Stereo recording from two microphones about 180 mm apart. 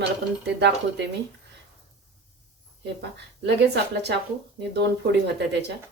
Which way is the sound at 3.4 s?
70° right (ahead or behind).